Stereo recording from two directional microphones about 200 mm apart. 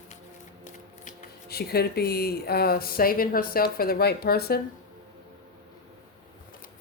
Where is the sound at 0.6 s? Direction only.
45° left (ahead or behind).